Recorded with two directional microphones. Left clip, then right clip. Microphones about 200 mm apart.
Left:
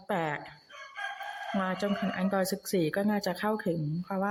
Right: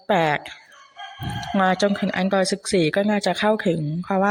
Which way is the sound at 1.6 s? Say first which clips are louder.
Right 13 dB; 20° right (ahead or behind).